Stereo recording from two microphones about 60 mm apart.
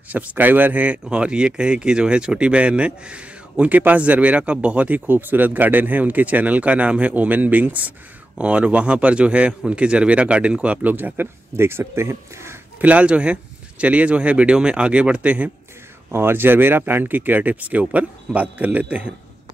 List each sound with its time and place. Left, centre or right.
0.1 s speech: right
12.8 s speech: right
16.1 s speech: right